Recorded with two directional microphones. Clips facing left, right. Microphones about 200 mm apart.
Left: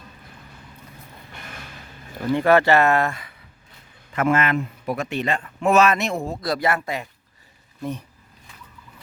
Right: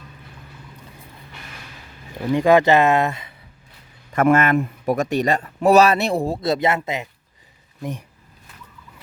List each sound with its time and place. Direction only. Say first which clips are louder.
2.3 s speech: right 2 dB; 15° right (ahead or behind)
4.1 s a man's voice: right 4 dB; 45° right (ahead or behind); by 8.0 s 15° right (ahead or behind)